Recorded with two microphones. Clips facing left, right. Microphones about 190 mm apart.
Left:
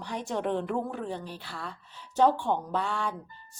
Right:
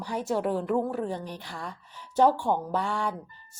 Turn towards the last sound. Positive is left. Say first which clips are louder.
# right 2 dB
turn(degrees=-10)  # may be behind; listen again after turning